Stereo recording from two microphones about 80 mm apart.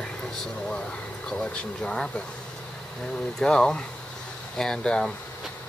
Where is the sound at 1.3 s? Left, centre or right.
Centre.